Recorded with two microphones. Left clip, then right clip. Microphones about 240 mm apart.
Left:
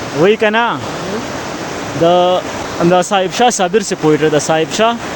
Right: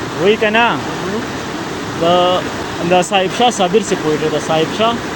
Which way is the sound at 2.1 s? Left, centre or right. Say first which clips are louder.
Left 1 dB; left.